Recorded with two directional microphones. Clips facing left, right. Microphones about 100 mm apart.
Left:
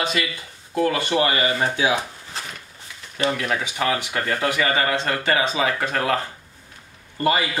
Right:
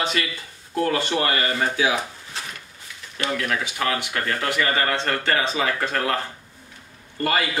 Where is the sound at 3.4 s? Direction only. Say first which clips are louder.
Left 1 dB; 15° left (ahead or behind).